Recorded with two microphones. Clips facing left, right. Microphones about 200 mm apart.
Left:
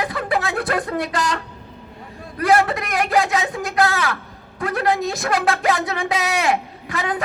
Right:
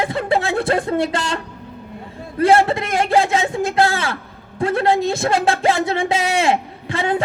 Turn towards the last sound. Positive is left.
turn(degrees=-25)  # may be behind; listen again after turning